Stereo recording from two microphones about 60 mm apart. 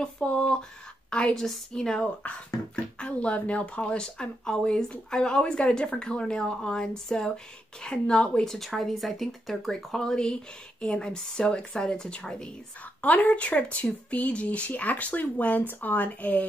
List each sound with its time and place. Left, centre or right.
0.0 s speech: centre
2.2 s speech: left
13.0 s speech: left